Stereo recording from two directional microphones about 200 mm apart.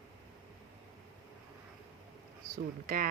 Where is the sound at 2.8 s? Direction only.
45° right (ahead or behind).